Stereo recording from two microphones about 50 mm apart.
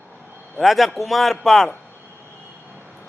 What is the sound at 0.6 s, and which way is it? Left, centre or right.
Speech, centre.